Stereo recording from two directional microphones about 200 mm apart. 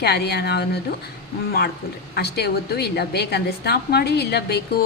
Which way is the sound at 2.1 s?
55° left (ahead or behind).